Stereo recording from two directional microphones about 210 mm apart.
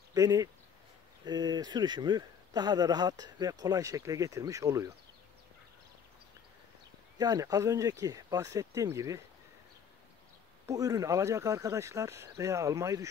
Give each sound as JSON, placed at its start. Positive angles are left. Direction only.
{"t": 0.1, "sound": "speech", "side_deg": -15}
{"t": 7.2, "sound": "speech", "side_deg": -20}
{"t": 10.7, "sound": "speech", "side_deg": -15}